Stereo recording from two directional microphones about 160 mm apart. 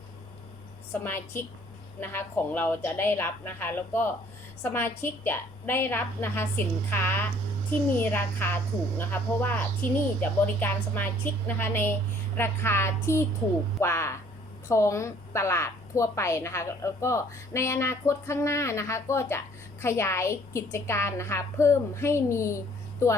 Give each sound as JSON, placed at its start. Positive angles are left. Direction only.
{"t": 1.0, "sound": "a woman's voice", "side_deg": 15}